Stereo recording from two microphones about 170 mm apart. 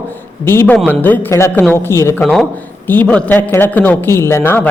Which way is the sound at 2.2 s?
Centre (ahead or behind).